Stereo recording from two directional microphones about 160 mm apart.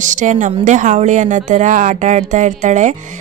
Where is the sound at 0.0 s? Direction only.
50° right (ahead or behind).